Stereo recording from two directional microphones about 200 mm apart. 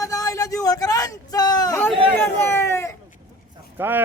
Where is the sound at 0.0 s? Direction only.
15° left (ahead or behind).